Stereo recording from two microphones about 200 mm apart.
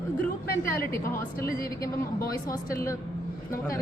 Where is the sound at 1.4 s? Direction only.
45° left (ahead or behind).